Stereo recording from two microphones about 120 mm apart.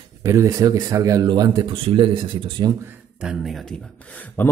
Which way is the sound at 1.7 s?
45° right (ahead or behind).